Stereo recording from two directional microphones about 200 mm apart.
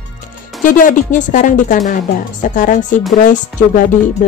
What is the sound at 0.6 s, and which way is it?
Speech, 40° left (ahead or behind).